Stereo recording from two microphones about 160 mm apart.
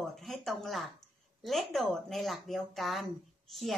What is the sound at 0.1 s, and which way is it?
Speech, centre (ahead or behind).